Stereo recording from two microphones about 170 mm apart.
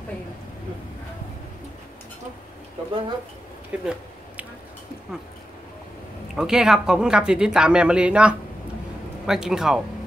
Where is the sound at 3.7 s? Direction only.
10° right (ahead or behind).